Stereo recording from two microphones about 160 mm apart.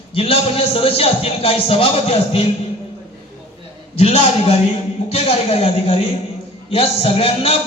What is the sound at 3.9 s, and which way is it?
A man's voice, 40° left (ahead or behind).